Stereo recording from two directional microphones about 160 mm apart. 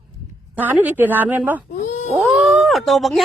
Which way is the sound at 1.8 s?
50° left (ahead or behind).